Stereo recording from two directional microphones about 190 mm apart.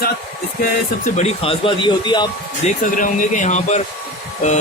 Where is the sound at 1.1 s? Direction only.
35° left (ahead or behind).